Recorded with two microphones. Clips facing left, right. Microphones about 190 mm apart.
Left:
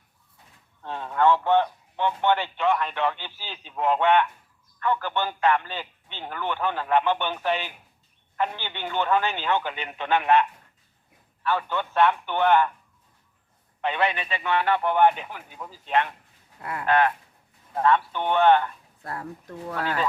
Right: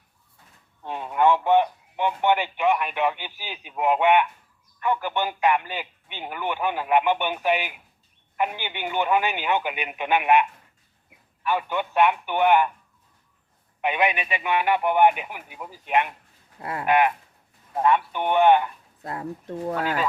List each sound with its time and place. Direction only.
0.8 s a sound: 15° right (ahead or behind)
4.8 s a man's voice: 15° right (ahead or behind)
11.4 s a man's voice: 15° right (ahead or behind)
13.8 s a man's voice: 15° right (ahead or behind)
16.6 s speech: 25° right (ahead or behind)
16.8 s a man's voice: 15° right (ahead or behind)
19.8 s a man's voice: 10° right (ahead or behind)